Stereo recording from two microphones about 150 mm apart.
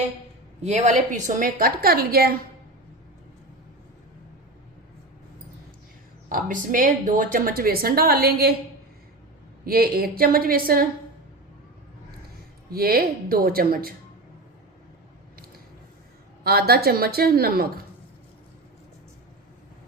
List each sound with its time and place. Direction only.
0.6 s a woman's voice: 50° right (ahead or behind); by 2.3 s 90° right
6.2 s a woman's voice: 65° right (ahead or behind); by 8.5 s 90° right
9.6 s a woman's voice: 85° right
12.7 s speech: 90° right
16.4 s a woman's voice: 90° right